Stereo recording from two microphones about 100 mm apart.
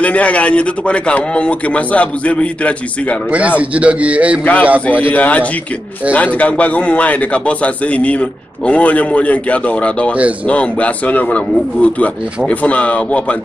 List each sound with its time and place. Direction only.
0.0 s a man's voice: 15° left (ahead or behind)
3.3 s a man's voice: 15° right (ahead or behind)
4.4 s a man's voice: 15° left (ahead or behind)